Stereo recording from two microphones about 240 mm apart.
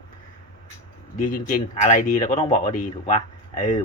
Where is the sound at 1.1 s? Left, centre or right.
Left.